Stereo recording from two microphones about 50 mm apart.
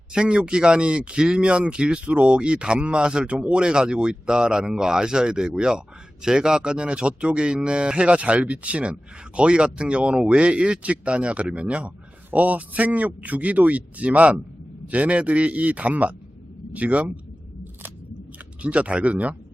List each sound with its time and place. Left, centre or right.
0.1 s a man's voice: centre
18.6 s a man's voice: right